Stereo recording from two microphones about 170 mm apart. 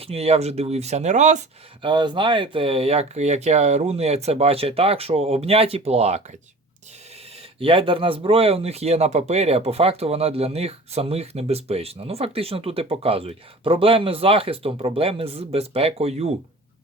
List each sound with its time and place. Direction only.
0.0 s speech: 35° right (ahead or behind)
1.8 s speech: 30° right (ahead or behind)
7.6 s speech: 30° right (ahead or behind)